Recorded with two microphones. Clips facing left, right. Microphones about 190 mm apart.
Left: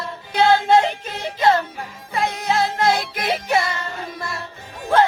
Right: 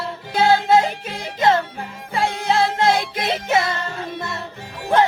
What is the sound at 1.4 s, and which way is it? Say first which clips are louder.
Music: even; 25° right (ahead or behind).